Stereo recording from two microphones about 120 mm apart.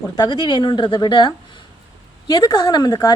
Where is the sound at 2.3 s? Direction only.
30° left (ahead or behind).